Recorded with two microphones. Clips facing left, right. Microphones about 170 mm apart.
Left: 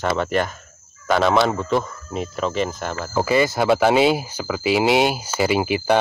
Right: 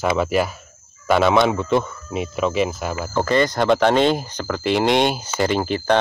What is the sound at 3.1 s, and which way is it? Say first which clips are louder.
Speech: even; 5° left (ahead or behind).